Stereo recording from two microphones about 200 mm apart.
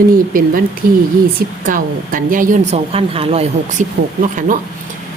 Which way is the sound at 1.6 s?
40° right (ahead or behind).